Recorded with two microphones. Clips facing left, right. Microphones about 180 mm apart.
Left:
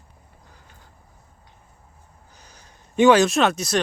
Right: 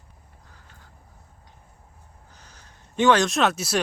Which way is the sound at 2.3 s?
10° left (ahead or behind).